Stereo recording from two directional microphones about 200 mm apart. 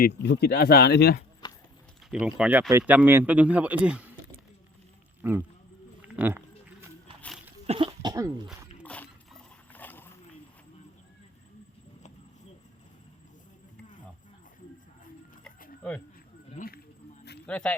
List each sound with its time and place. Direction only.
0.0 s speech: 55° left (ahead or behind)
1.4 s clip-clop: 20° left (ahead or behind)
2.0 s speech: 5° right (ahead or behind)
5.2 s speech: 10° right (ahead or behind)
6.0 s a sound: 10° right (ahead or behind)
7.7 s cough: 25° right (ahead or behind)
8.8 s wild animals: 5° left (ahead or behind)
16.5 s a sound: 45° left (ahead or behind)
17.4 s speech: 5° left (ahead or behind)